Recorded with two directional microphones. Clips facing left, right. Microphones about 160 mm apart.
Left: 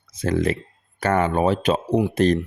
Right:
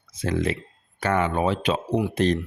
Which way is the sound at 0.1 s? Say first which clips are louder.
Left 3 dB; 45° left (ahead or behind).